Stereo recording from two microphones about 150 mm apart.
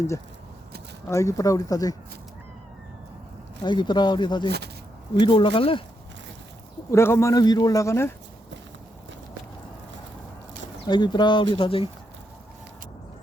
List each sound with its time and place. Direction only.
1.0 s a man's voice: 20° left (ahead or behind)
3.6 s a man's voice: 30° left (ahead or behind)
6.9 s a man's voice: 15° left (ahead or behind)
10.8 s speech: 30° left (ahead or behind)